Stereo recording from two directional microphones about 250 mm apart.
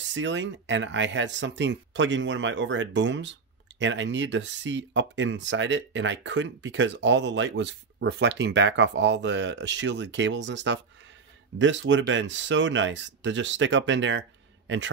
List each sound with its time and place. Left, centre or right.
0.0 s speech: right